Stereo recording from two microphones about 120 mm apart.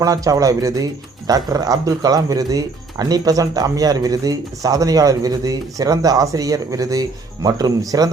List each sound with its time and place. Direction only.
0.0 s speech: 30° right (ahead or behind)